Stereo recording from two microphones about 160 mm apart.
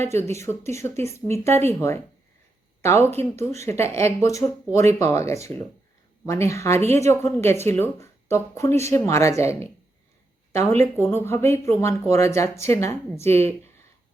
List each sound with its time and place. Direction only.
0.1 s speech: 15° left (ahead or behind)
11.0 s speech: 15° left (ahead or behind)